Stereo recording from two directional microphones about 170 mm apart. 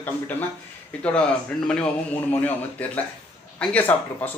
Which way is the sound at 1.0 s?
5° left (ahead or behind).